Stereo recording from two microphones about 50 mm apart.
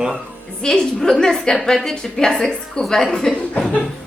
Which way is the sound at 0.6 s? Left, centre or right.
Centre.